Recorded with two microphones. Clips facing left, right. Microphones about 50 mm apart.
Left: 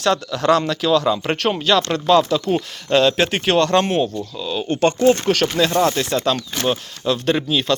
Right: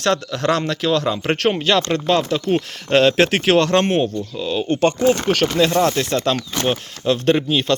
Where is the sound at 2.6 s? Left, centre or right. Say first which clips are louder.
Right 1 dB; right.